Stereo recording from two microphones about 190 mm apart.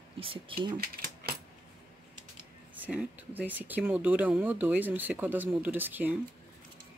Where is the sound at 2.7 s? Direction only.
5° right (ahead or behind).